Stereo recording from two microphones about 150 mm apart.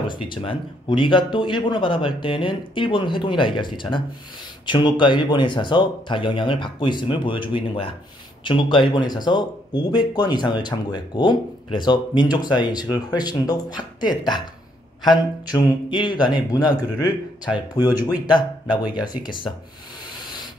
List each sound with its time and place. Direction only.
0.1 s speech: 35° left (ahead or behind)